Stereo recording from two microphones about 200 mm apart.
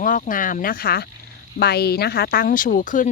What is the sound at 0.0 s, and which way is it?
Speech, 40° left (ahead or behind).